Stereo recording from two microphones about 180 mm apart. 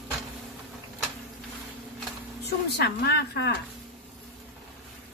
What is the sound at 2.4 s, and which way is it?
A woman's voice, 65° left (ahead or behind).